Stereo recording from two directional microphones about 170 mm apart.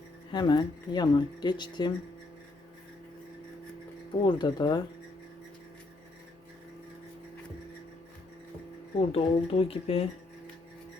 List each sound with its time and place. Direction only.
0.3 s speech: 25° left (ahead or behind)
4.2 s speech: 25° left (ahead or behind)
9.0 s speech: 35° left (ahead or behind)